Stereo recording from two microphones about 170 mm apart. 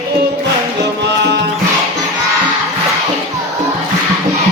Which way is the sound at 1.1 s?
90° right.